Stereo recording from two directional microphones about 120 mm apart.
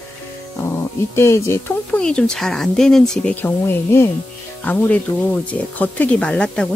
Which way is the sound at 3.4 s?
20° left (ahead or behind).